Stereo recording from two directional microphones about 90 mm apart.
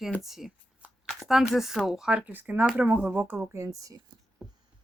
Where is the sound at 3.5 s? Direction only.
40° right (ahead or behind).